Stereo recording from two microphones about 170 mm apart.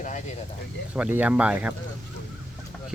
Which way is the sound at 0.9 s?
10° right (ahead or behind).